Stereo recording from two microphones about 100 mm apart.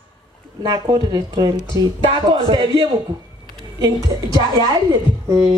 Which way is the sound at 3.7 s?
40° right (ahead or behind).